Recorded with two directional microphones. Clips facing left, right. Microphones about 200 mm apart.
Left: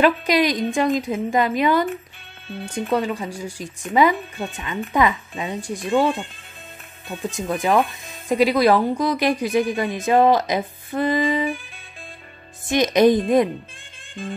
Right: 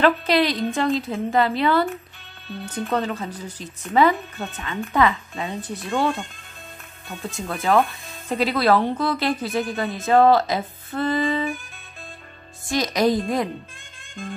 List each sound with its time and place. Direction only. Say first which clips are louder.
0.0 s speech: left 1 dB; 15° left (ahead or behind)
12.6 s a woman's voice: left 5 dB; 20° left (ahead or behind)